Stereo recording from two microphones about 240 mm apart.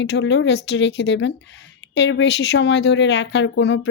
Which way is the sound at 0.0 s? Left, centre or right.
Left.